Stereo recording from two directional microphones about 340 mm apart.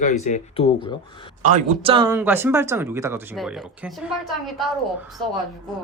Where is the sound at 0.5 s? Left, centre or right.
Centre.